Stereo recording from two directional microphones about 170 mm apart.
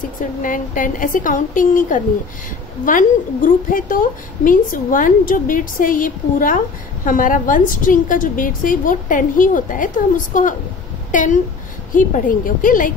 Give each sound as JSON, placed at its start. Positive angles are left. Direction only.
{"t": 0.2, "sound": "a woman's voice", "side_deg": 50}